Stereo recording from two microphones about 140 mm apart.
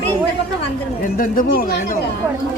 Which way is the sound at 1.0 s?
80° left.